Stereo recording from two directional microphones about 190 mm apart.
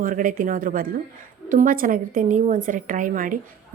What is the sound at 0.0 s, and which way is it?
Speech, 45° right (ahead or behind).